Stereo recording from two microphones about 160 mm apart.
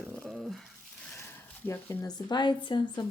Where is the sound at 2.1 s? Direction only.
30° left (ahead or behind).